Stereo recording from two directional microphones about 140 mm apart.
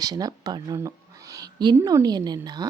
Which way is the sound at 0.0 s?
25° right (ahead or behind).